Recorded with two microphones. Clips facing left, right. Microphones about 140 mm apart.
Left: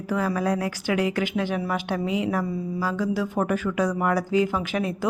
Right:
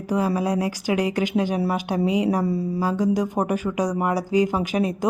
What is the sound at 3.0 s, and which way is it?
A woman's voice, 15° right (ahead or behind).